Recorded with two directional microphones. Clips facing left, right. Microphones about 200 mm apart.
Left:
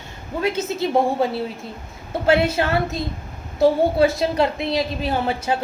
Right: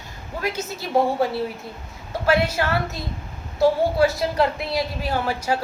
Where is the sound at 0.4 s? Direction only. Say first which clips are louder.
Left 6 dB; 25° left (ahead or behind).